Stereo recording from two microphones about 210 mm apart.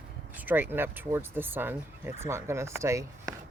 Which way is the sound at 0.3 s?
10° right (ahead or behind).